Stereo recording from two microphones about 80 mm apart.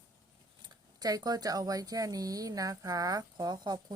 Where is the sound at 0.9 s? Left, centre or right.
Right.